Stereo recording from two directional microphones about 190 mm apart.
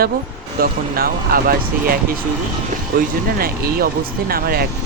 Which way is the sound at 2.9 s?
55° right (ahead or behind).